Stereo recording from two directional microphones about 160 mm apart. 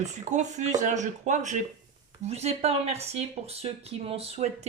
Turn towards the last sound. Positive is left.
turn(degrees=-40)  # may be behind; listen again after turning